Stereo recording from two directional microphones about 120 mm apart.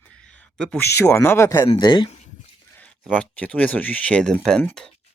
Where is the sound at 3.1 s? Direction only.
10° left (ahead or behind).